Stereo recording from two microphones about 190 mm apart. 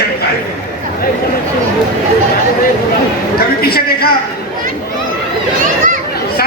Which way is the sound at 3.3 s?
55° left (ahead or behind).